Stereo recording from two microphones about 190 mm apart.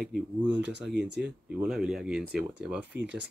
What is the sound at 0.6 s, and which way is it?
Speech, 65° right (ahead or behind).